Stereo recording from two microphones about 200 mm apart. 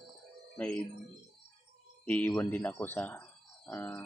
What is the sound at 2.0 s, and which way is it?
Speech, 10° left (ahead or behind).